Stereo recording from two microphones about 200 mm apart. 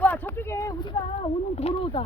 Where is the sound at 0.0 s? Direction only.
10° left (ahead or behind).